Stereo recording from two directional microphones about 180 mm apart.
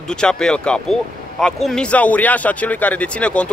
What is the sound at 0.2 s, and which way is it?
Speech, 5° left (ahead or behind).